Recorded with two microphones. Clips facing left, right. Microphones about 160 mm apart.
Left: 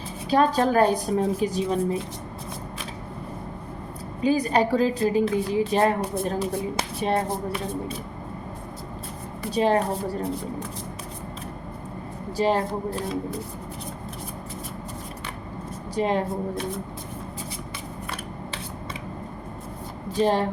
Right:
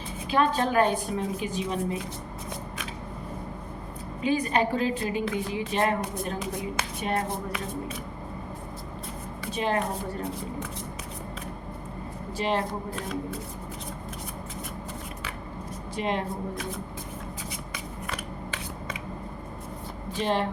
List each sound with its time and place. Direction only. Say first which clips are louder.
0.3 s a woman's voice: left 4 dB; 40° left (ahead or behind)
4.2 s a woman's voice: left 4 dB; 35° left (ahead or behind)
9.5 s a woman's voice: left 6 dB; 35° left (ahead or behind)
16.0 s a woman's voice: left 5 dB; 35° left (ahead or behind)
20.1 s a woman's voice: left 5 dB; 40° left (ahead or behind)